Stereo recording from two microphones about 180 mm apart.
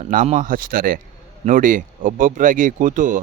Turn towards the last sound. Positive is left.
turn(degrees=-45)  # may be behind; listen again after turning